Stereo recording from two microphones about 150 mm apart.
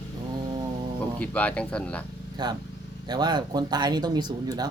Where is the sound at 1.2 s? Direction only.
10° left (ahead or behind).